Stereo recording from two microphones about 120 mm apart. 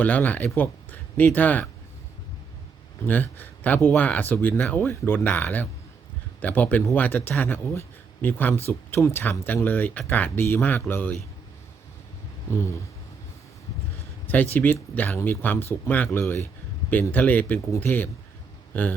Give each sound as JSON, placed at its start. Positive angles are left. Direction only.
{"t": 0.0, "sound": "speech", "side_deg": 15}
{"t": 3.1, "sound": "speech", "side_deg": 15}
{"t": 12.5, "sound": "speech", "side_deg": 20}
{"t": 14.5, "sound": "a man's voice", "side_deg": 15}